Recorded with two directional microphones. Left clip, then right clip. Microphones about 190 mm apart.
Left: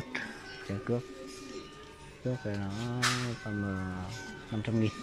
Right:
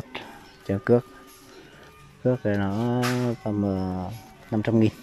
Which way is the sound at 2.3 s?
45° right (ahead or behind).